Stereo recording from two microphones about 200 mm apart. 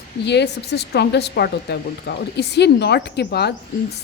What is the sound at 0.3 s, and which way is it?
Speech, 55° left (ahead or behind).